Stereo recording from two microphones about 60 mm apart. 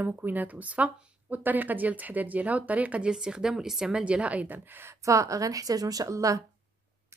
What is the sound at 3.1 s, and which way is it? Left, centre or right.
A woman's voice, centre.